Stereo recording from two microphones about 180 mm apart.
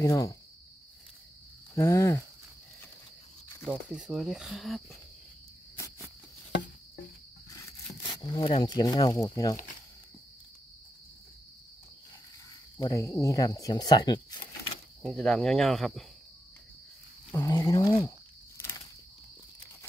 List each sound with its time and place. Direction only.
0.0 s speech: 20° left (ahead or behind)
1.8 s speech: 15° left (ahead or behind)
3.6 s speech: 5° right (ahead or behind)
7.5 s speech: 20° left (ahead or behind)
12.7 s speech: 15° left (ahead or behind)
15.0 s speech: 5° left (ahead or behind)
17.3 s wild animals: 15° left (ahead or behind)